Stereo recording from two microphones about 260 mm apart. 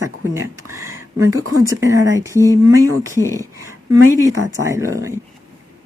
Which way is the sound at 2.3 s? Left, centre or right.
Centre.